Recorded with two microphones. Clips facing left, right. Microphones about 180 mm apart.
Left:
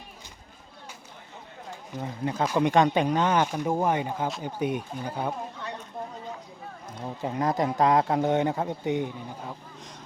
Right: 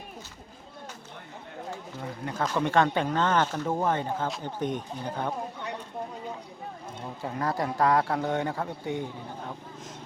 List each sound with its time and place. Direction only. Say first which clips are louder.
2.2 s speech: left 4 dB; 15° left (ahead or behind)
7.2 s a man's voice: left 4 dB; 20° left (ahead or behind)